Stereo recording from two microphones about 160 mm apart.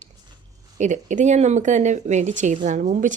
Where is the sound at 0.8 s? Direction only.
50° right (ahead or behind).